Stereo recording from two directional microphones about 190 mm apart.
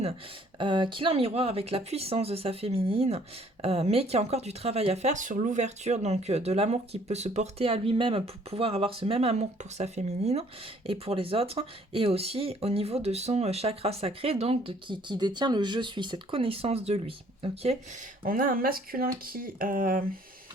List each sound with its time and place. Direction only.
0.6 s speech: 25° right (ahead or behind)
18.2 s speech: 50° right (ahead or behind)